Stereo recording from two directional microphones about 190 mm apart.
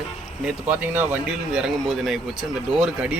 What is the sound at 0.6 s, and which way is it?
Speech, 10° right (ahead or behind).